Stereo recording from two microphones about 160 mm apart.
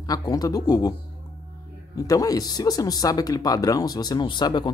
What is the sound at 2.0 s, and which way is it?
Speech, 20° left (ahead or behind).